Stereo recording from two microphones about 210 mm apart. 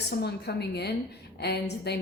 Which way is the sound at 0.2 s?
50° left (ahead or behind).